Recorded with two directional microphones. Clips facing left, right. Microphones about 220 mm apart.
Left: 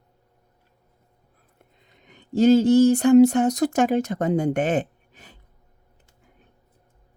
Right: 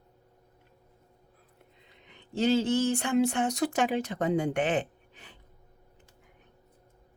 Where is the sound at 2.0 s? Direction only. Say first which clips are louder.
Left 10 dB; 40° left (ahead or behind).